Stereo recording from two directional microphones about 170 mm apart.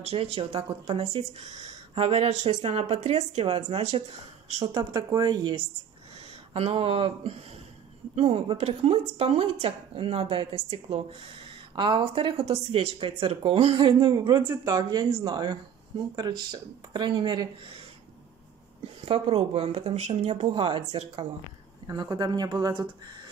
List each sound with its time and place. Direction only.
0.0 s speech: 35° right (ahead or behind)
4.7 s speech: 25° right (ahead or behind)
6.5 s speech: 35° right (ahead or behind)
18.9 s speech: 35° right (ahead or behind)